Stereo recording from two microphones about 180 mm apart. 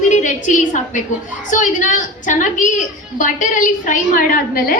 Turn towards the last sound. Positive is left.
turn(degrees=55)  # may be behind; listen again after turning